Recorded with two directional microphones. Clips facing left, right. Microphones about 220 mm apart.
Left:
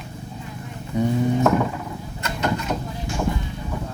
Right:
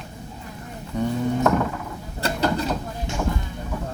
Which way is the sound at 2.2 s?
35° right (ahead or behind).